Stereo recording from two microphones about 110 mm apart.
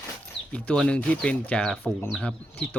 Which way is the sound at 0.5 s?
10° left (ahead or behind).